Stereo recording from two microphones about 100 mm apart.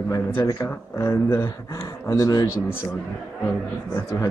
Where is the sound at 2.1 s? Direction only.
40° left (ahead or behind).